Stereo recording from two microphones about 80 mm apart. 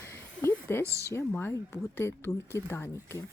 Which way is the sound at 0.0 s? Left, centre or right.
Left.